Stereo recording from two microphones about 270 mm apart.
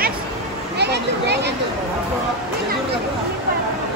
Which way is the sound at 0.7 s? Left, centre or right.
Right.